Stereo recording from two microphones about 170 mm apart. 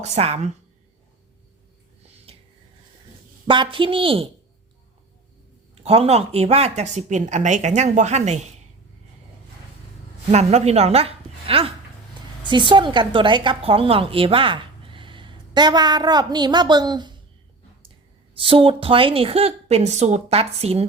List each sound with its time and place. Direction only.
0.0 s speech: 40° right (ahead or behind)
3.4 s speech: 30° right (ahead or behind)
5.8 s a woman's voice: 35° right (ahead or behind)
10.3 s a woman's voice: 40° right (ahead or behind)
18.3 s speech: 30° right (ahead or behind)